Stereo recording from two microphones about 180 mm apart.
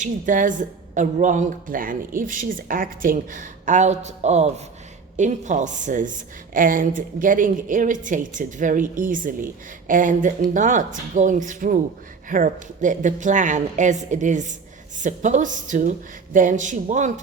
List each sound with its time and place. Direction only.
0.0 s a woman's voice: 45° right (ahead or behind)